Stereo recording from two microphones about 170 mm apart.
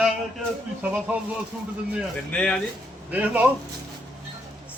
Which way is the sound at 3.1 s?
10° right (ahead or behind).